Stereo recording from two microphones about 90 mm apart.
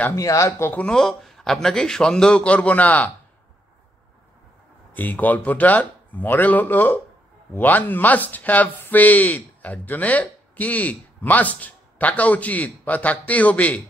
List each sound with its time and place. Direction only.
0.1 s speech: 35° left (ahead or behind)
0.7 s speech: 10° left (ahead or behind)
4.9 s speech: 20° left (ahead or behind)